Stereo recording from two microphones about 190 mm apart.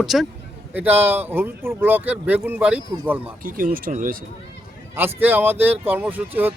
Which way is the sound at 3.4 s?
45° right (ahead or behind).